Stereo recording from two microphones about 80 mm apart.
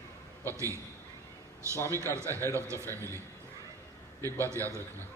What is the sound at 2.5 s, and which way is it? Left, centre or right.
Speech, right.